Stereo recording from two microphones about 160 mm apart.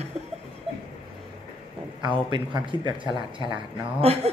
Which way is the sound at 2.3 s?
30° right (ahead or behind).